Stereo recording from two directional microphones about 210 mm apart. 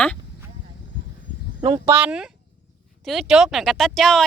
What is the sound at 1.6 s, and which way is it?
Speech, 20° right (ahead or behind).